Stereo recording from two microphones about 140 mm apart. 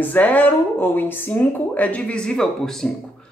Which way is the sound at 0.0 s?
10° left (ahead or behind).